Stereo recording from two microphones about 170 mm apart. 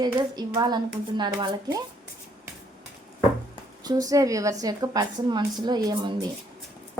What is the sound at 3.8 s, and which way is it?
Speech, 20° right (ahead or behind).